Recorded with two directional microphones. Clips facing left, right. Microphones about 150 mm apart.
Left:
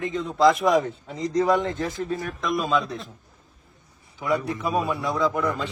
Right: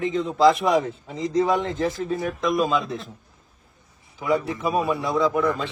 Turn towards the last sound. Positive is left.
turn(degrees=0)  # may be behind; listen again after turning